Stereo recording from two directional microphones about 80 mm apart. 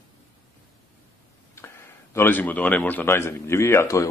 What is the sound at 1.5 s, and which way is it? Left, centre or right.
Speech, left.